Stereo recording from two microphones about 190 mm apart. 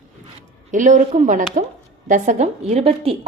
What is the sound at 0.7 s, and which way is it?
A woman's voice, 40° right (ahead or behind).